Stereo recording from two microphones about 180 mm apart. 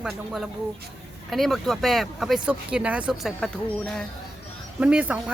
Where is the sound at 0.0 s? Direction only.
Centre (ahead or behind).